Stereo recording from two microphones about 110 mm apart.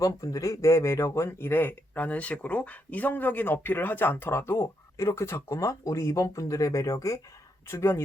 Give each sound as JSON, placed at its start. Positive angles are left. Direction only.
{"t": 0.0, "sound": "a man's voice", "side_deg": 30}